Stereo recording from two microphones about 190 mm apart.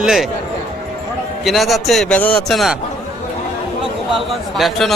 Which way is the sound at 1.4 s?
Centre (ahead or behind).